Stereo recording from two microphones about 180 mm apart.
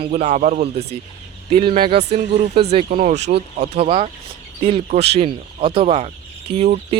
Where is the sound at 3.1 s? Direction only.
70° right (ahead or behind).